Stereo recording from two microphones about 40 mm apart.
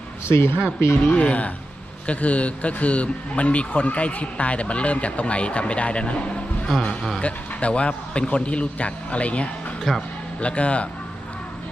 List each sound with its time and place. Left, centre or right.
0.3 s speech: left
1.0 s a man's voice: left
9.9 s speech: centre
10.4 s a man's voice: left